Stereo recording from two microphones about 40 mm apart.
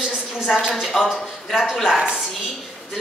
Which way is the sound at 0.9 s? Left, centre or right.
Centre.